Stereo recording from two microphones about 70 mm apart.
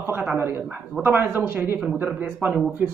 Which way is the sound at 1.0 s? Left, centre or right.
Right.